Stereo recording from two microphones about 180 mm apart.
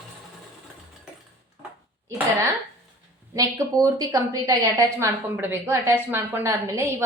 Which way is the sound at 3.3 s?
20° right (ahead or behind).